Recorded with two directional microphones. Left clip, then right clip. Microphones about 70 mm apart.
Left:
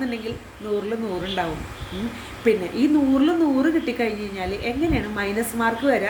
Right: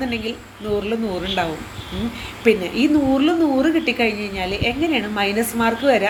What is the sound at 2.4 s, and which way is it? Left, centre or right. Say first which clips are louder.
A woman's voice: right 3 dB; left.